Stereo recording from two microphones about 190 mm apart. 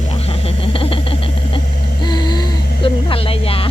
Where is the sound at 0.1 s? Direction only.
30° left (ahead or behind).